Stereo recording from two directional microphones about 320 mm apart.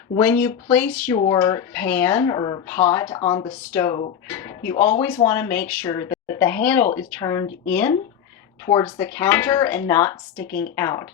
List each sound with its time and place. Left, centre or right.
0.1 s speech: centre
10.4 s a woman's voice: left
10.8 s speech: centre